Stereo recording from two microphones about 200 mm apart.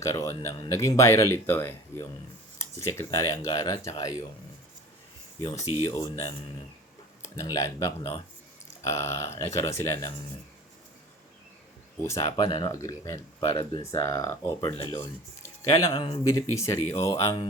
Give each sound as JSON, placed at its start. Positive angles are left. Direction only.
{"t": 0.0, "sound": "speech", "side_deg": 15}
{"t": 5.4, "sound": "speech", "side_deg": 20}
{"t": 7.3, "sound": "speech", "side_deg": 20}
{"t": 12.0, "sound": "speech", "side_deg": 15}